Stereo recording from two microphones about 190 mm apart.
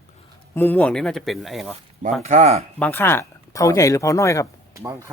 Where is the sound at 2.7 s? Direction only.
10° left (ahead or behind).